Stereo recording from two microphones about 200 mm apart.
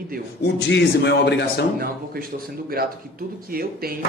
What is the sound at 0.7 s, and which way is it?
Speech, 60° left (ahead or behind).